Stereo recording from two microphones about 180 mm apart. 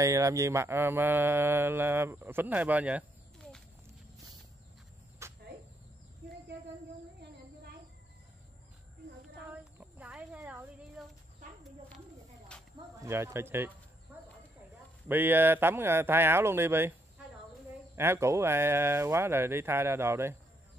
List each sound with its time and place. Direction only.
0.0 s speech: 15° right (ahead or behind)
5.2 s cricket: 15° right (ahead or behind)
9.5 s a sound: 10° right (ahead or behind)
12.5 s a sound: 5° left (ahead or behind)
13.0 s speech: 15° right (ahead or behind)
15.0 s speech: 10° right (ahead or behind)
17.9 s speech: 15° right (ahead or behind)